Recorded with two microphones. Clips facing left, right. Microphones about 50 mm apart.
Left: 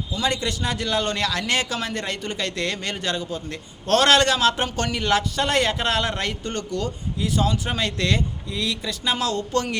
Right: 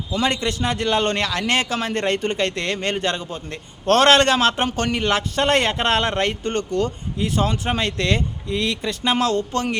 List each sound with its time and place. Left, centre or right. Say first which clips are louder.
0.2 s a man's voice: right 3 dB; right